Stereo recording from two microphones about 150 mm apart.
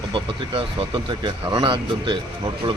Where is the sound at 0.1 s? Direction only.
35° right (ahead or behind).